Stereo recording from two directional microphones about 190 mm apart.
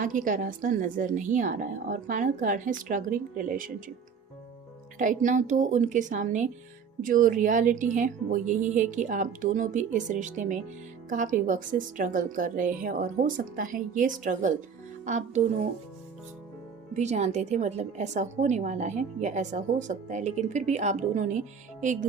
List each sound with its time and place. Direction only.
0.0 s a woman's voice: 45° right (ahead or behind)
4.9 s a woman's voice: 40° right (ahead or behind)
16.9 s a woman's voice: 35° right (ahead or behind)